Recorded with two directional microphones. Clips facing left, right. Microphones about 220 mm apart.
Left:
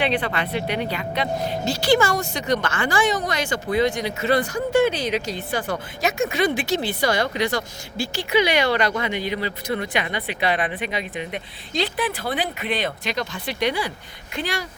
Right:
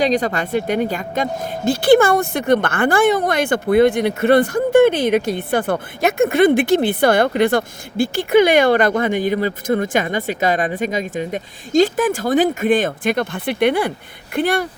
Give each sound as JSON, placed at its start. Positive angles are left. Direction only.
{"t": 0.0, "sound": "speech", "side_deg": -40}